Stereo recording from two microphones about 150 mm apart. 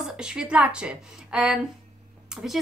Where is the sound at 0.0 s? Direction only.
5° right (ahead or behind).